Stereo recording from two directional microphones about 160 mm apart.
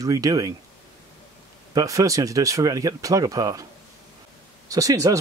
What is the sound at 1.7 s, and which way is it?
Speech, 20° right (ahead or behind).